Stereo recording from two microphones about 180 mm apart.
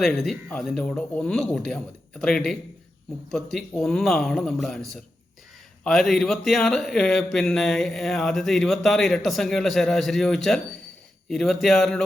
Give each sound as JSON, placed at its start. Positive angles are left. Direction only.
{"t": 0.0, "sound": "speech", "side_deg": 0}
{"t": 5.8, "sound": "speech", "side_deg": 5}